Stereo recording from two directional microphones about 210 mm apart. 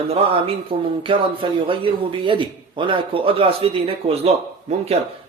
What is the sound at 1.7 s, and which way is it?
A man's voice, 25° right (ahead or behind).